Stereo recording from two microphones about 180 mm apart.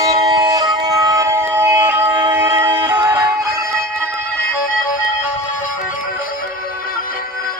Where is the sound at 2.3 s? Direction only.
15° right (ahead or behind).